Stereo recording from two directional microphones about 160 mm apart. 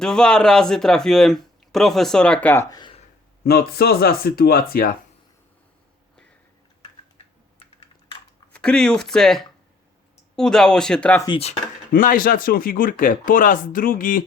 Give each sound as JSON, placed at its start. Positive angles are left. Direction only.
{"t": 0.0, "sound": "a man's voice", "side_deg": 5}
{"t": 3.4, "sound": "speech", "side_deg": 75}
{"t": 8.5, "sound": "a man's voice", "side_deg": 5}
{"t": 11.3, "sound": "speech", "side_deg": 40}
{"t": 11.9, "sound": "speech", "side_deg": 60}